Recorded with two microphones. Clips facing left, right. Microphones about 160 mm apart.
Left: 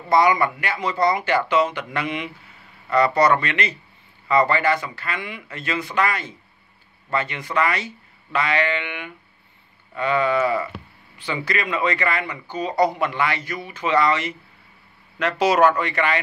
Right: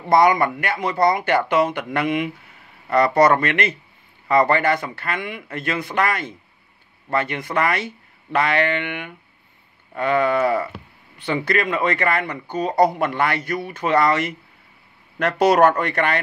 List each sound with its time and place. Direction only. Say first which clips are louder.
0.1 s speech: right 2 dB; 50° right (ahead or behind)